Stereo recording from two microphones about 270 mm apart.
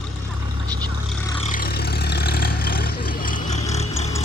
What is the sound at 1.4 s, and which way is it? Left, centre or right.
Vehicle, left.